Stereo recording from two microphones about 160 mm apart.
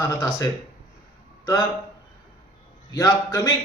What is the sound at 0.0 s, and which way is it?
Speech, 20° left (ahead or behind).